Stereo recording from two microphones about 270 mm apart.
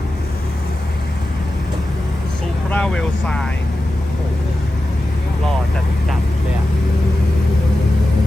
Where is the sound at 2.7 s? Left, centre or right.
Centre.